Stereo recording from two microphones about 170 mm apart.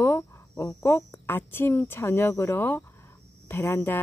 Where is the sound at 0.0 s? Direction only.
15° left (ahead or behind).